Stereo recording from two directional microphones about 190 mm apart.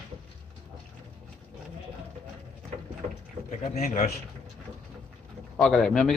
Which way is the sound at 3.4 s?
40° left (ahead or behind).